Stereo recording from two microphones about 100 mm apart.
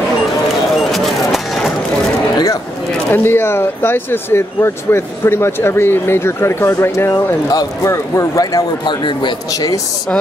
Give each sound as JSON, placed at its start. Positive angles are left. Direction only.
{"t": 0.9, "sound": "music", "side_deg": 0}
{"t": 2.3, "sound": "a sound", "side_deg": 35}
{"t": 3.1, "sound": "a man's voice", "side_deg": 20}
{"t": 8.8, "sound": "speech", "side_deg": 50}